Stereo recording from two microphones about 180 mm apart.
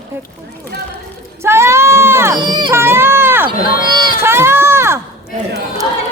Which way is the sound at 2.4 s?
25° right (ahead or behind).